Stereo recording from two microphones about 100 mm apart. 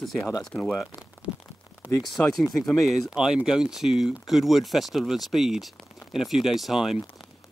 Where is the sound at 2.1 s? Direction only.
Centre (ahead or behind).